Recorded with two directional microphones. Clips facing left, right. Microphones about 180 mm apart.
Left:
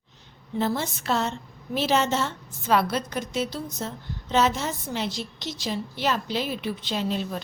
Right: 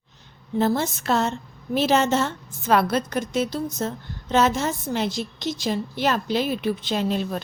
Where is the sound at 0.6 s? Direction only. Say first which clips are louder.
Right 4 dB; 45° right (ahead or behind).